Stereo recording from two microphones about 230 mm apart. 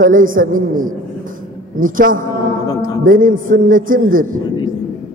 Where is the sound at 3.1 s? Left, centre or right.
Right.